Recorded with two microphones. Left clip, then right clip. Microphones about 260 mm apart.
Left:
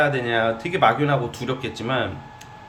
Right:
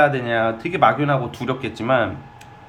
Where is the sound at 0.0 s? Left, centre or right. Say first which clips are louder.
Right 3 dB; centre.